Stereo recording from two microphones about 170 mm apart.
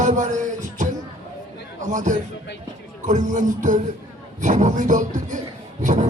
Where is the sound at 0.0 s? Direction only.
45° right (ahead or behind).